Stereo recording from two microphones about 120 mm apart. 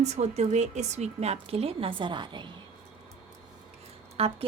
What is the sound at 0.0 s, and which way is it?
A woman's voice, 65° right (ahead or behind).